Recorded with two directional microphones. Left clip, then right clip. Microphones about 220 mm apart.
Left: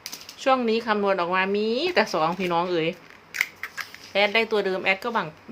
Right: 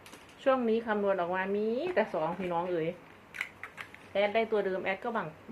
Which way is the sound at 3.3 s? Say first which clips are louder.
Left 12 dB; 25° left (ahead or behind).